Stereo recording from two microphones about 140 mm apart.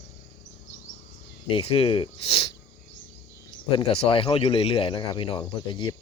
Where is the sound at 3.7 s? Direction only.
40° left (ahead or behind).